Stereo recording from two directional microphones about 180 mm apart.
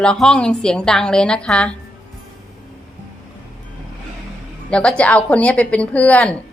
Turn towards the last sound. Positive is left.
turn(degrees=5)  # may be behind; listen again after turning